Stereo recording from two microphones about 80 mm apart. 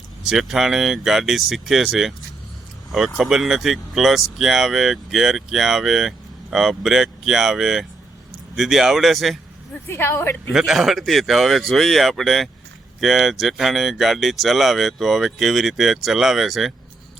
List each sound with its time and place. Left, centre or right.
0.3 s speech: centre
3.2 s speech: centre
9.8 s a woman's voice: left
10.5 s speech: centre